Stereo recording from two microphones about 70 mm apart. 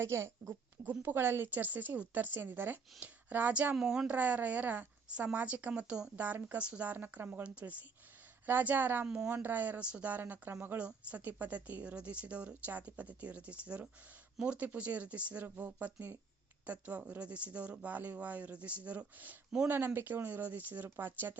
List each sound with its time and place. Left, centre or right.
0.0 s speech: right
0.9 s a woman's voice: right
3.8 s speech: centre
4.1 s a woman's voice: right
9.0 s speech: centre
9.3 s a woman's voice: right
10.8 s a woman's voice: centre